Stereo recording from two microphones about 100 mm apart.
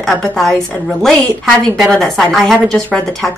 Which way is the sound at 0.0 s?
5° left (ahead or behind).